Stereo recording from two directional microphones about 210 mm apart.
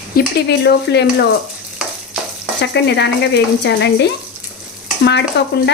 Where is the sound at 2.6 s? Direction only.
55° left (ahead or behind).